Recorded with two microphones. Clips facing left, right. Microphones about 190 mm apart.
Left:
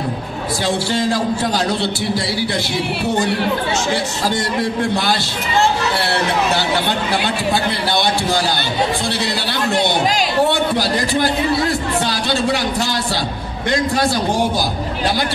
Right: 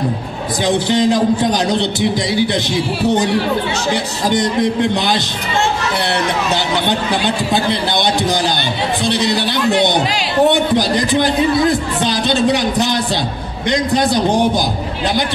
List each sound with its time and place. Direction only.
0.7 s speech: 20° right (ahead or behind)
3.9 s speech: 20° right (ahead or behind)
6.5 s speech: 20° right (ahead or behind)